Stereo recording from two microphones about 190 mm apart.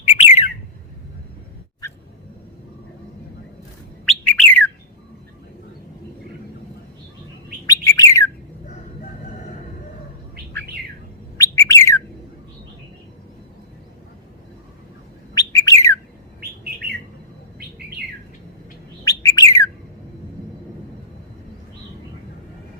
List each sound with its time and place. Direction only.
0.1 s bird: 35° left (ahead or behind)
4.0 s bird: 5° left (ahead or behind)
7.7 s bird: 15° left (ahead or behind)
11.3 s bird: 15° left (ahead or behind)
15.4 s bird: 15° left (ahead or behind)
16.4 s bird: 55° right (ahead or behind)
19.0 s bird: 15° left (ahead or behind)